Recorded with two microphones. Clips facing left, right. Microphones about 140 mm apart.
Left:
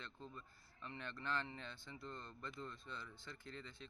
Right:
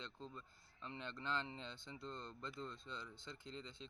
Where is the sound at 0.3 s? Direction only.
20° right (ahead or behind).